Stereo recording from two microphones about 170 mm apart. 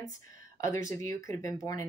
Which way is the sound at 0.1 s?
20° left (ahead or behind).